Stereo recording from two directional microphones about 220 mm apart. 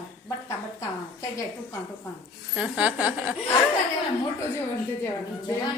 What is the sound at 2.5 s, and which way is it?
Speech, 5° right (ahead or behind).